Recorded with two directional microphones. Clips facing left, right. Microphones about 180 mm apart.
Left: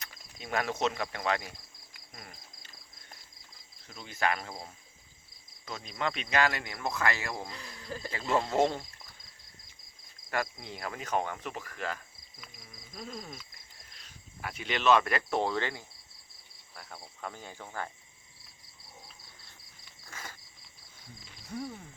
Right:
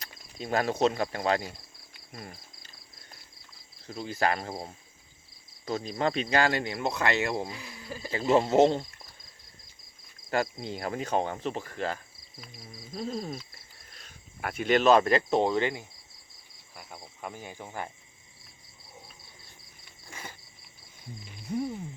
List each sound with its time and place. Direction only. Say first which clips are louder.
0.0 s speech: right 7 dB; 35° right (ahead or behind)
3.8 s cricket: right 4 dB; 35° right (ahead or behind)
5.6 s speech: right 6 dB; 30° right (ahead or behind)
7.5 s speech: right 1 dB; 10° right (ahead or behind)
8.1 s speech: right 7 dB; 25° right (ahead or behind)
10.2 s cricket: right 5 dB; 25° right (ahead or behind)
14.0 s speech: right 5 dB; 50° right (ahead or behind); by 15.9 s 15° right (ahead or behind)
16.7 s cricket: right 1 dB; 10° right (ahead or behind)
17.2 s speech: right 3 dB; 10° right (ahead or behind)
20.1 s cricket: right 2 dB; 15° right (ahead or behind)
21.2 s music: right 7 dB; 15° right (ahead or behind)